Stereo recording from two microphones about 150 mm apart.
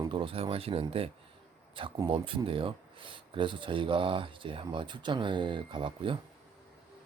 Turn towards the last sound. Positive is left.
turn(degrees=-35)  # may be behind; listen again after turning